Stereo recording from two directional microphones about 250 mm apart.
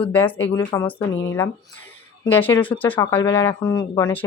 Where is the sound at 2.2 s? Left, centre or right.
Centre.